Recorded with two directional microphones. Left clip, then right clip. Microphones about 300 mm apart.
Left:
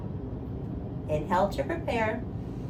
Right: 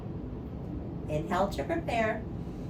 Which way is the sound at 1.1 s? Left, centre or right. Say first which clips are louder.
Left 4 dB; centre.